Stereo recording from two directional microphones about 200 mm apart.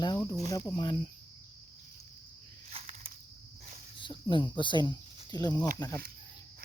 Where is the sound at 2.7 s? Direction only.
30° right (ahead or behind).